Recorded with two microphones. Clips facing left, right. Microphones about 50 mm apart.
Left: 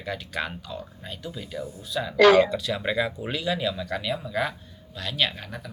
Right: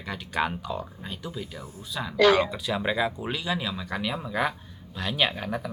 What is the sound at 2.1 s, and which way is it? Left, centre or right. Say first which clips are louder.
Speech: left 3 dB; left.